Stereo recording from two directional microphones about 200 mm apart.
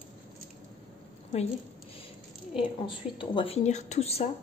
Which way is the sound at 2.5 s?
25° left (ahead or behind).